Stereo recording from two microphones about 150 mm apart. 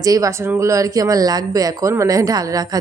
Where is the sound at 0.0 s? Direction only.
25° right (ahead or behind).